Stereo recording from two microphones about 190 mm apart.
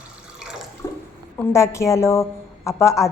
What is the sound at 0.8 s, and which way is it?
Water, 15° left (ahead or behind).